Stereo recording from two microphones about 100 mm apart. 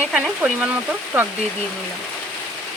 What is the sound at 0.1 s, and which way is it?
Speech, 10° right (ahead or behind).